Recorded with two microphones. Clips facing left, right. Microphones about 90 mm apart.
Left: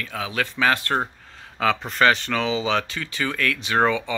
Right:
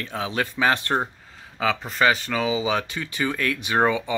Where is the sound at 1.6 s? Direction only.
Centre (ahead or behind).